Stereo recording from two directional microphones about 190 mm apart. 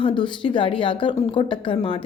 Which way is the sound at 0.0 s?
25° left (ahead or behind).